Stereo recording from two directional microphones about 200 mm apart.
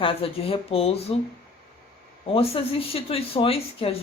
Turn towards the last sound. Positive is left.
turn(degrees=30)  # may be behind; listen again after turning